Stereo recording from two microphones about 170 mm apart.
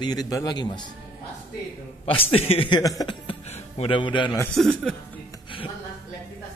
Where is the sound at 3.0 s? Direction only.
30° left (ahead or behind).